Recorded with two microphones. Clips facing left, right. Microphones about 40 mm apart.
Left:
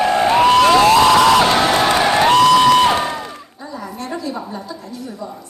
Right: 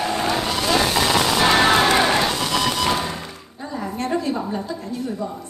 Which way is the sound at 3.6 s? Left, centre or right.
Right.